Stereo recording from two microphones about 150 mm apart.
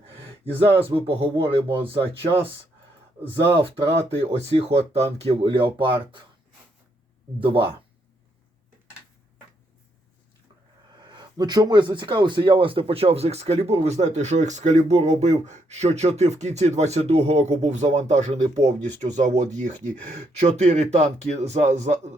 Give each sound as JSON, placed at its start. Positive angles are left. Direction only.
{"t": 0.8, "sound": "speech", "side_deg": -40}
{"t": 3.6, "sound": "speech", "side_deg": -40}
{"t": 7.3, "sound": "speech", "side_deg": -35}
{"t": 10.9, "sound": "speech", "side_deg": -30}
{"t": 20.6, "sound": "speech", "side_deg": -50}